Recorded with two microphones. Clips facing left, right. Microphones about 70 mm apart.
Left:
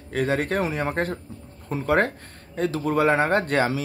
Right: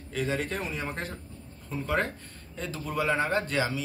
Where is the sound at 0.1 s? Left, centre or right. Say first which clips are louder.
Left 7 dB; left.